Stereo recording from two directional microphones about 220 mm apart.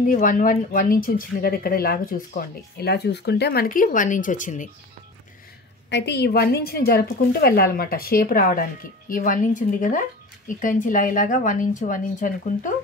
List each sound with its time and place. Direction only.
0.0 s speech: 35° left (ahead or behind)
5.9 s a woman's voice: 50° left (ahead or behind); by 12.7 s 35° left (ahead or behind)